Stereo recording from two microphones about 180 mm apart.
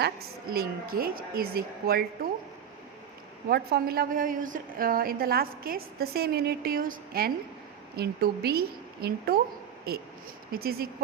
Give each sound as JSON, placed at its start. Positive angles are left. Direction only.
{"t": 0.5, "sound": "a woman's voice", "side_deg": -60}
{"t": 3.5, "sound": "a woman's voice", "side_deg": -60}